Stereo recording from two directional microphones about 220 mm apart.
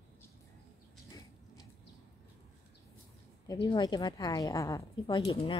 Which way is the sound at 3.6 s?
20° left (ahead or behind).